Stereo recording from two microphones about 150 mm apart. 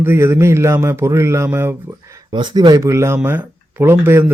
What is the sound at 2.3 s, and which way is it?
A man's voice, 30° right (ahead or behind).